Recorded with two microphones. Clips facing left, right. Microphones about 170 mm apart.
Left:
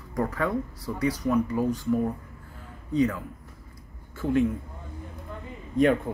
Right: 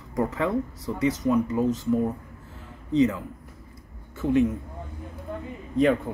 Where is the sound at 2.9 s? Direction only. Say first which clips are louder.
Right 3 dB; 25° right (ahead or behind).